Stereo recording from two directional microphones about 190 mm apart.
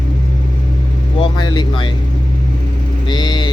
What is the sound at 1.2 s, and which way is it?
Speech, 25° left (ahead or behind).